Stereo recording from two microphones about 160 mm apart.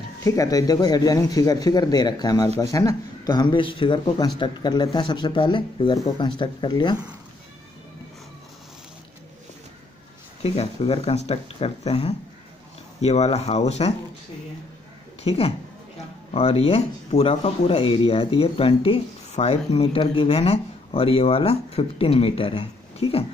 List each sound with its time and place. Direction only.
0.2 s speech: 20° left (ahead or behind)
10.4 s speech: 40° left (ahead or behind)
15.2 s speech: 40° left (ahead or behind)